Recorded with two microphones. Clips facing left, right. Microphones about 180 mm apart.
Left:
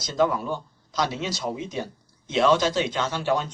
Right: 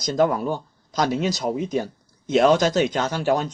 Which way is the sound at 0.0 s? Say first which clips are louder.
Right 3 dB; 45° right (ahead or behind).